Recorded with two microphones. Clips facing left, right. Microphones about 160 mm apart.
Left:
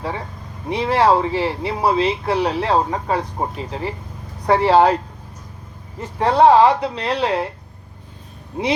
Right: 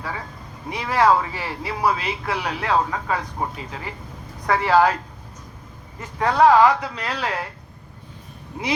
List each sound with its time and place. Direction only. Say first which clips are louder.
0.7 s speech: left 3 dB; 30° left (ahead or behind)
6.0 s speech: left 3 dB; 30° left (ahead or behind)
8.5 s speech: left 7 dB; 30° left (ahead or behind)